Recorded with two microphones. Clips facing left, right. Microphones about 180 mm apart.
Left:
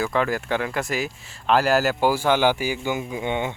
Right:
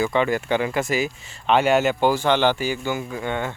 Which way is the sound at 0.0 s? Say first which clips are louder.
Right 2 dB; centre (ahead or behind).